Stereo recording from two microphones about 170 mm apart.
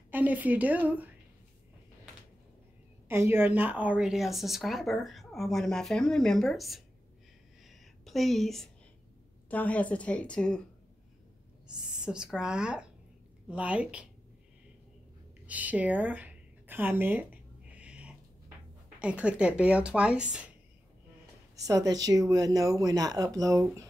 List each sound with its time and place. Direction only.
0.1 s speech: 10° right (ahead or behind)
3.1 s speech: 15° right (ahead or behind)
7.6 s a sound: centre (ahead or behind)
9.5 s a woman's voice: 10° left (ahead or behind)
11.9 s a woman's voice: 5° right (ahead or behind)
15.4 s a sound: 10° right (ahead or behind)
18.9 s speech: 5° right (ahead or behind)
21.5 s speech: 20° right (ahead or behind)